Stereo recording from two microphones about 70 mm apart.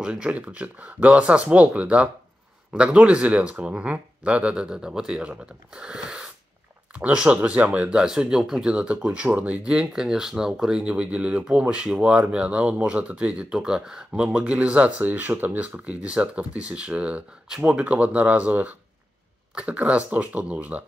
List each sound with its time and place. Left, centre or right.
0.0 s speech: centre
9.7 s speech: centre